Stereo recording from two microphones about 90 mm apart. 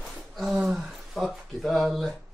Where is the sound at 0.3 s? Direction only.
Centre (ahead or behind).